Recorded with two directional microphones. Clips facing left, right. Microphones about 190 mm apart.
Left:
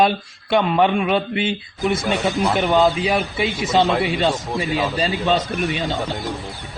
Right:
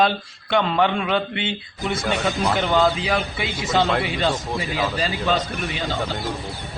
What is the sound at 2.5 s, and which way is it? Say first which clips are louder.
A man's voice: left 2 dB; 15° left (ahead or behind).